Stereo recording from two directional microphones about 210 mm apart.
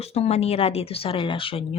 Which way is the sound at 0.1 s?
30° left (ahead or behind).